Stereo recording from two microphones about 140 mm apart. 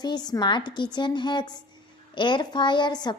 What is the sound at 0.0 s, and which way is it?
A child's voice, 30° left (ahead or behind).